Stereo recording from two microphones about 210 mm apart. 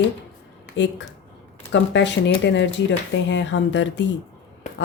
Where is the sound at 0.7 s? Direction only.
60° left (ahead or behind).